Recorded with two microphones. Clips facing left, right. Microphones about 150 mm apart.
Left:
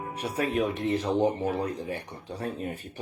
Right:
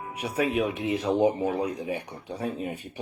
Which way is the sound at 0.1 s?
10° right (ahead or behind).